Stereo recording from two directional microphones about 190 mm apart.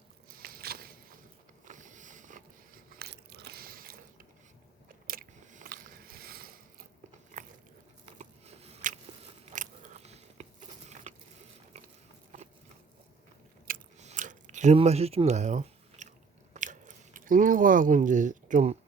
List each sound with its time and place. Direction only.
0.3 s a sound: 50° right (ahead or behind)
1.6 s biting: 40° right (ahead or behind)
7.3 s biting: 40° right (ahead or behind)
11.1 s a sound: 40° right (ahead or behind)
13.7 s chewing: 40° right (ahead or behind)
16.6 s biting: 40° right (ahead or behind)